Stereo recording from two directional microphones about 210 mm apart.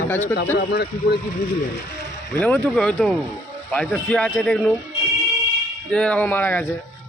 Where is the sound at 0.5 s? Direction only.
50° left (ahead or behind).